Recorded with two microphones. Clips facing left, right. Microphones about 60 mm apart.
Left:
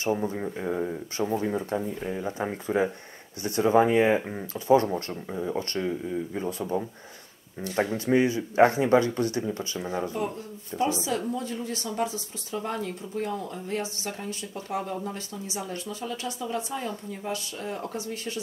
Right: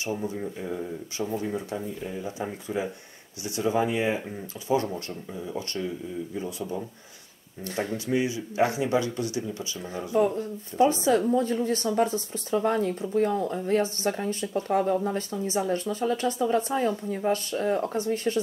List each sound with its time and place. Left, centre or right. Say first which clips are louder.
0.2 s a man's voice: left 2 dB; left
4.6 s a man's voice: left 5 dB; left
10.1 s speech: right 8 dB; right